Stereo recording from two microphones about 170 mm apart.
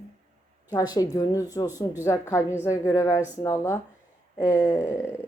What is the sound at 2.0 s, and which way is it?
Speech, 20° left (ahead or behind).